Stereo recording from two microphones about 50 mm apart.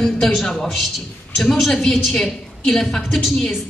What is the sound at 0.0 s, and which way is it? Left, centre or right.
A man's voice, centre.